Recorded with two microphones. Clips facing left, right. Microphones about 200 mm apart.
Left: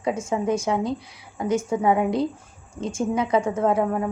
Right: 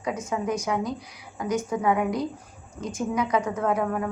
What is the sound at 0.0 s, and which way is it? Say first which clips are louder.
A woman's voice: left 4 dB; 25° left (ahead or behind).